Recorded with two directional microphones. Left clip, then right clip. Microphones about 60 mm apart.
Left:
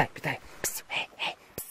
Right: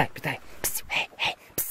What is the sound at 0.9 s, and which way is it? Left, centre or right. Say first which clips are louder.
Whispering: right 6 dB; centre.